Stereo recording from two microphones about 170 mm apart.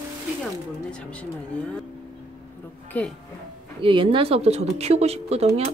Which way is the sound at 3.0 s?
10° left (ahead or behind).